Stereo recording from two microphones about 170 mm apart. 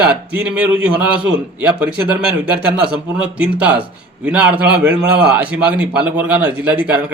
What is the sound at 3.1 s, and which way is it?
A man's voice, 5° right (ahead or behind).